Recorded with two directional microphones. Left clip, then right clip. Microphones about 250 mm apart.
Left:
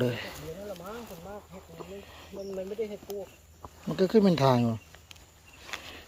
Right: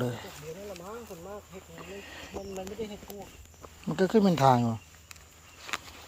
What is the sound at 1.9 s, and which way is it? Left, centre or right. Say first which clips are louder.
Speech: right 2 dB; centre.